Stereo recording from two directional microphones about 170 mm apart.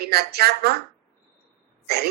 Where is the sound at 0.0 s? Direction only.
70° right (ahead or behind).